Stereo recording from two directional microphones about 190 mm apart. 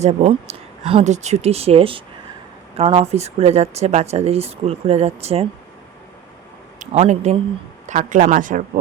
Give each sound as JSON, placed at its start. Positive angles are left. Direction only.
{"t": 0.0, "sound": "speech", "side_deg": -35}
{"t": 6.7, "sound": "a man's voice", "side_deg": -35}